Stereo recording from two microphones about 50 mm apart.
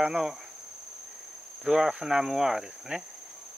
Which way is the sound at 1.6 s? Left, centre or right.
Centre.